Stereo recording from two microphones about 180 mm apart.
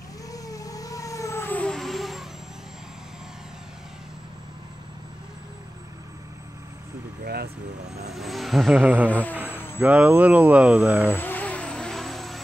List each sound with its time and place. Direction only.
0.3 s vehicle: 20° left (ahead or behind); by 2.2 s centre (ahead or behind)
8.2 s speech: centre (ahead or behind)
9.1 s a sound: 10° left (ahead or behind)
9.8 s speech: 5° right (ahead or behind)
11.1 s vehicle: 10° left (ahead or behind)